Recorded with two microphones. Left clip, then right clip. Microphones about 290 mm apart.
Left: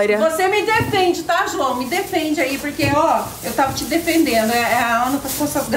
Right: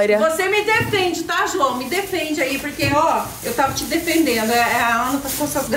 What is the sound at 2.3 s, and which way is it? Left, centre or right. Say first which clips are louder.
A woman's voice: left 1 dB; centre.